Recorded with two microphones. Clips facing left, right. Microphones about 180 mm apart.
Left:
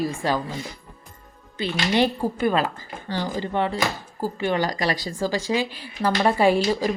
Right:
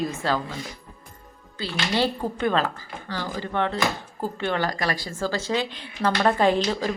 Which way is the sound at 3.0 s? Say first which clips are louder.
Left 4 dB; 20° left (ahead or behind).